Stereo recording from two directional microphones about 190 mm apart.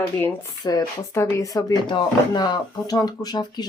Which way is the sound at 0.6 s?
20° left (ahead or behind).